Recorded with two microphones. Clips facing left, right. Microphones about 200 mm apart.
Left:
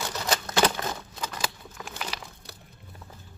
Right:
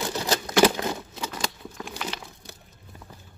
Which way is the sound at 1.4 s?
5° left (ahead or behind).